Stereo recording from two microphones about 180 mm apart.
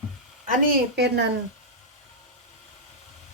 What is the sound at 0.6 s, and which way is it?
Speech, 70° right (ahead or behind).